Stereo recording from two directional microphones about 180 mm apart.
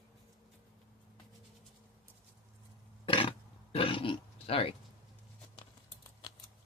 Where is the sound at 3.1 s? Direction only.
30° left (ahead or behind).